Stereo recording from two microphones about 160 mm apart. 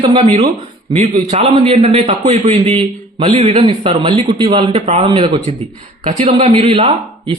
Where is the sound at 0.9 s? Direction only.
45° right (ahead or behind).